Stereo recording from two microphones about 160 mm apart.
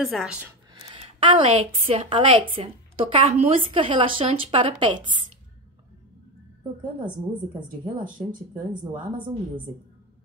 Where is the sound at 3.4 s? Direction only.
35° right (ahead or behind).